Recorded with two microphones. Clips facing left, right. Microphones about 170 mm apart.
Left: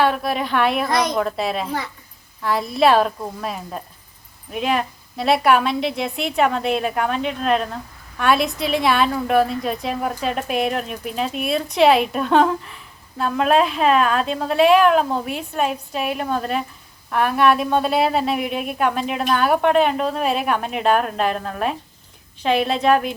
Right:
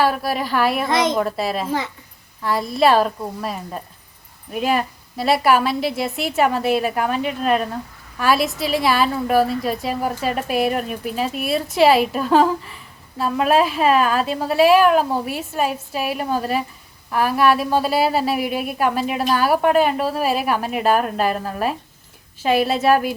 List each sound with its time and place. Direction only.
0.0 s a woman's voice: centre (ahead or behind)
0.9 s a woman's voice: 25° right (ahead or behind)
1.1 s a woman's voice: centre (ahead or behind)